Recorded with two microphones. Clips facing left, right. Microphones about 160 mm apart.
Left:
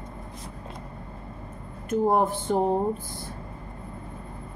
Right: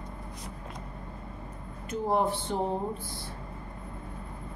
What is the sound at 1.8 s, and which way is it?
Speech, 50° left (ahead or behind).